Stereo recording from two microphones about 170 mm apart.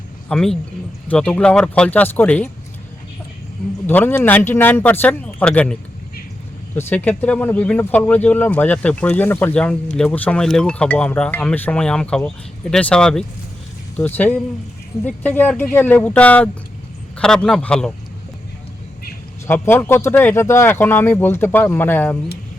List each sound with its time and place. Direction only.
0.3 s a man's voice: 5° left (ahead or behind)
3.8 s speech: 10° left (ahead or behind)
6.7 s a man's voice: 10° left (ahead or behind)
19.5 s speech: 10° left (ahead or behind)